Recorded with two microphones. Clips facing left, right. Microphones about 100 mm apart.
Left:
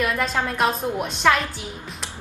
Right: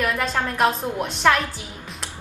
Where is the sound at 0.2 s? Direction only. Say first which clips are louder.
Right 1 dB; centre (ahead or behind).